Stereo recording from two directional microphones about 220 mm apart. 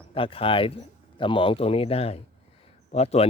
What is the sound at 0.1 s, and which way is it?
Speech, 25° left (ahead or behind).